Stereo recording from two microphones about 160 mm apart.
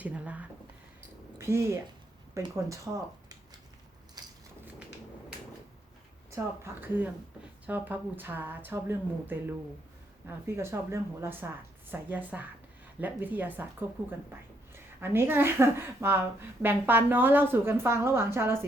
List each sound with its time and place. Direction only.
0.0 s a sound: 10° right (ahead or behind)
1.4 s speech: 15° right (ahead or behind)
6.3 s speech: 15° right (ahead or behind)
15.0 s speech: 15° right (ahead or behind)